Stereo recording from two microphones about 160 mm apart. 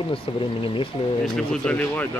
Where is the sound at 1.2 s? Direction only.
5° left (ahead or behind).